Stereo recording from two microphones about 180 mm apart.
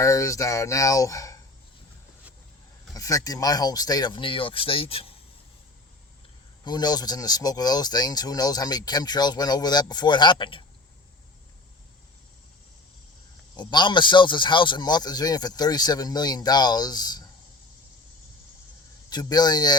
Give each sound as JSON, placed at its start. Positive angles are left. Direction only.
{"t": 0.0, "sound": "speech", "side_deg": 15}
{"t": 2.9, "sound": "speech", "side_deg": 20}
{"t": 6.7, "sound": "speech", "side_deg": 20}
{"t": 13.6, "sound": "speech", "side_deg": 25}
{"t": 19.1, "sound": "speech", "side_deg": 20}